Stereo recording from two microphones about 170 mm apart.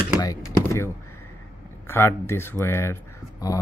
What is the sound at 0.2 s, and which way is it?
Speech, 20° left (ahead or behind).